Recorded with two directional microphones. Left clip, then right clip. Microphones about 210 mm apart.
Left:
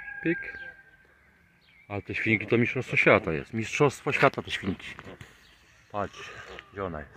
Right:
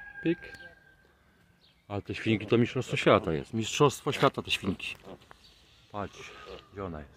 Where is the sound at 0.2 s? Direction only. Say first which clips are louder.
Left 2 dB; 5° right (ahead or behind).